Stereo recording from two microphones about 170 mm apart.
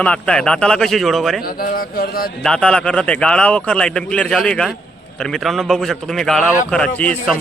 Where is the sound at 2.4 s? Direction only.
5° left (ahead or behind).